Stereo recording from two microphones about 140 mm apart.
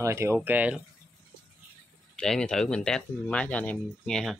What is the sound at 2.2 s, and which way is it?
Speech, 5° left (ahead or behind).